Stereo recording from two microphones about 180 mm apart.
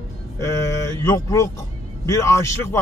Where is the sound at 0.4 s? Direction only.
15° left (ahead or behind).